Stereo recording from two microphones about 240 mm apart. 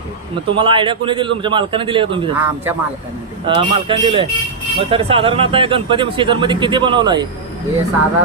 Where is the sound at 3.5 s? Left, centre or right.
Right.